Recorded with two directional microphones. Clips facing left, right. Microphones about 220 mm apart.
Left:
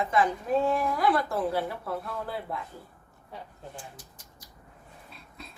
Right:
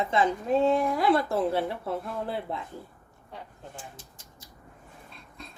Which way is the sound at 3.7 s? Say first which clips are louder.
Even; 25° right (ahead or behind).